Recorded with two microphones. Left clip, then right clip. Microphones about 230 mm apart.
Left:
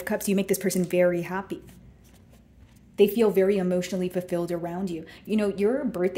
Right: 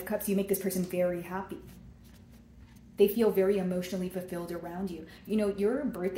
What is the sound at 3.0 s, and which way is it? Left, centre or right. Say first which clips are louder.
Speech: left 5 dB; left.